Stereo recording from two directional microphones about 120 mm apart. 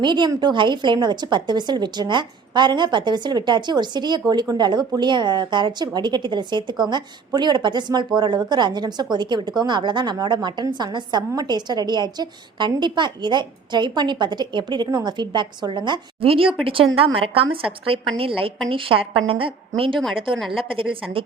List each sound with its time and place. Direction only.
0.0 s a woman's voice: 40° right (ahead or behind)